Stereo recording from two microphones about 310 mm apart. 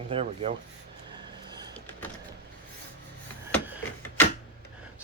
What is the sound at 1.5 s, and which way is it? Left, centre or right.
Power windows, centre.